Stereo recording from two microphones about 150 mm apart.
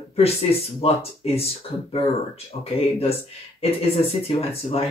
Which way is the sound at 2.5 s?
35° left (ahead or behind).